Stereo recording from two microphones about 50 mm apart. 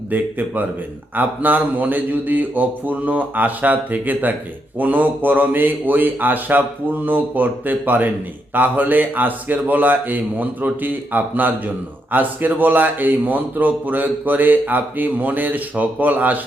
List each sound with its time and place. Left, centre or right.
0.1 s a man's voice: right